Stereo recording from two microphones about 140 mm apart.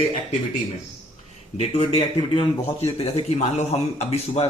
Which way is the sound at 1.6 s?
45° left (ahead or behind).